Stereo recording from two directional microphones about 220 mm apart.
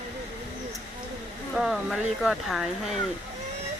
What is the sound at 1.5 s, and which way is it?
Speech, centre (ahead or behind).